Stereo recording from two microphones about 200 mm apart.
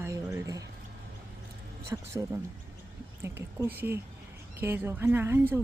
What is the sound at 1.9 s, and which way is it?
A woman's voice, 15° right (ahead or behind).